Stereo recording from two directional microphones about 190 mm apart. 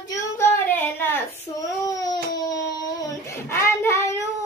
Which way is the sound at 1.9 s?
20° left (ahead or behind).